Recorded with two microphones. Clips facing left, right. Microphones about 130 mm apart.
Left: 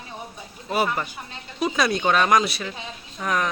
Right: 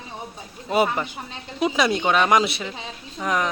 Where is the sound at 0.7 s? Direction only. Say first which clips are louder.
Right 3 dB; 20° right (ahead or behind).